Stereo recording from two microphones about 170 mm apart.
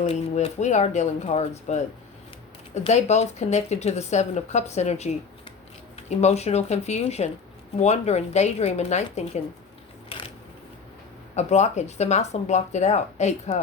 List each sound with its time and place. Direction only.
0.0 s speech: 40° left (ahead or behind)
2.8 s speech: 40° left (ahead or behind)
10.1 s mechanisms: 35° left (ahead or behind)
11.3 s speech: 40° left (ahead or behind)